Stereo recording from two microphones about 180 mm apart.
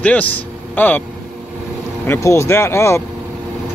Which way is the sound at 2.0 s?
15° left (ahead or behind).